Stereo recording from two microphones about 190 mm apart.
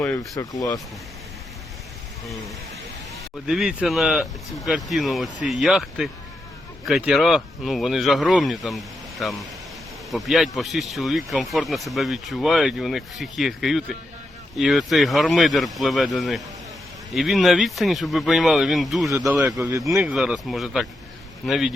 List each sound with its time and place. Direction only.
0.0 s speech: 15° left (ahead or behind)
3.4 s speech: 5° right (ahead or behind)